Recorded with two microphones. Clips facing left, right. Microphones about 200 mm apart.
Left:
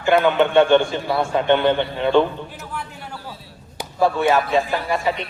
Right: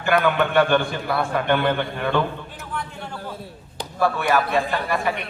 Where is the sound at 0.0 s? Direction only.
25° left (ahead or behind).